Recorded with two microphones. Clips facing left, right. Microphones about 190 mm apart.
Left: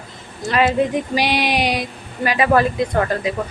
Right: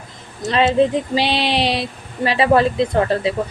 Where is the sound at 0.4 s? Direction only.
25° right (ahead or behind).